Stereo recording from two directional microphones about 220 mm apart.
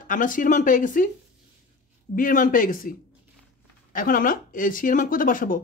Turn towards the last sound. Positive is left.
turn(degrees=40)  # may be behind; listen again after turning